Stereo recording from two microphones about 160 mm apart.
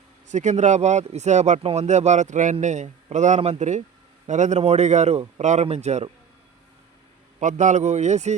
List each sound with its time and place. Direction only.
0.3 s speech: 50° right (ahead or behind)
7.3 s speech: 50° right (ahead or behind)